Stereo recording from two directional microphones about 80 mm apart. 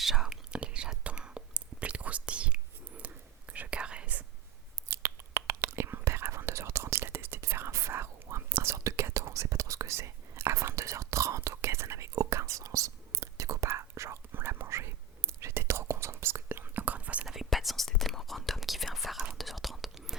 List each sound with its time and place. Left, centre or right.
0.0 s whispering: centre
4.9 s whispering: right; by 17.2 s centre
17.2 s whispering: centre